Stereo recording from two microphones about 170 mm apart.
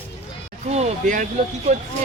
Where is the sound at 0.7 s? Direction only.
45° right (ahead or behind).